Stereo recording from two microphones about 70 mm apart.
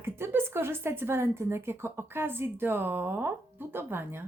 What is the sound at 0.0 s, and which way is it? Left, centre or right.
A woman's voice, right.